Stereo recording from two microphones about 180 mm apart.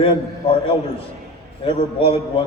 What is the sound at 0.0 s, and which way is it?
A man's voice, 30° left (ahead or behind).